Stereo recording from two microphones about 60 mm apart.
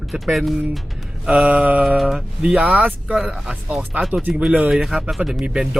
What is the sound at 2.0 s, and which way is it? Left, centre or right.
Speech, centre.